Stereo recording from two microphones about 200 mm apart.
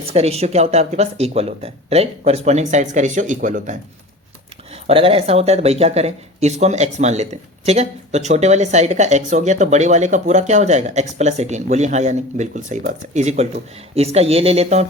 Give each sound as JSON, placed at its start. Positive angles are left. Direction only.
{"t": 0.0, "sound": "speech", "side_deg": -30}
{"t": 4.7, "sound": "speech", "side_deg": -30}